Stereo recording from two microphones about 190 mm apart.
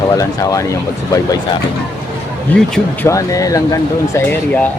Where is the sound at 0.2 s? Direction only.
15° left (ahead or behind).